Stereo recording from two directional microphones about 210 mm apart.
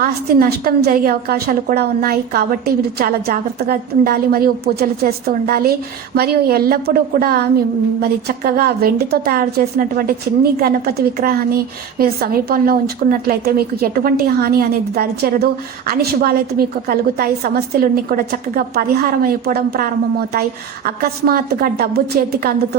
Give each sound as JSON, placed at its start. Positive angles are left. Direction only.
{"t": 0.0, "sound": "a woman's voice", "side_deg": -45}
{"t": 8.4, "sound": "a woman's voice", "side_deg": -45}